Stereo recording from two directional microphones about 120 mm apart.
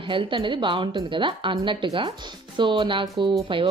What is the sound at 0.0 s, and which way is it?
Speech, 45° right (ahead or behind).